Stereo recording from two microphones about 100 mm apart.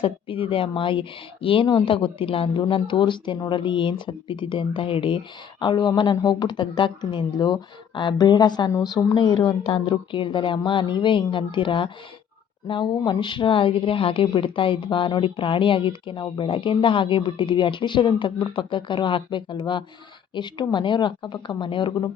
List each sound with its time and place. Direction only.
0.0 s a woman's voice: 65° left (ahead or behind)